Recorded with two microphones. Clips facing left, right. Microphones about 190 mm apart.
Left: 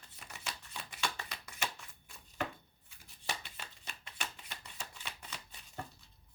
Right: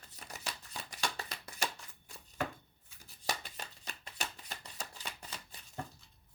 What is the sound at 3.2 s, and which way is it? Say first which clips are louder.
Chopping: right 3 dB; 40° right (ahead or behind).